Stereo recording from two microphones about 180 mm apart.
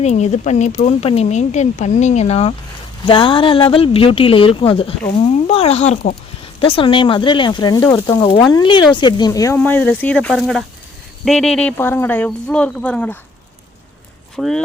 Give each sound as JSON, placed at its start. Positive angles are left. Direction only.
{"t": 0.0, "sound": "speech", "side_deg": 40}
{"t": 6.4, "sound": "speech", "side_deg": 30}
{"t": 14.3, "sound": "speech", "side_deg": 5}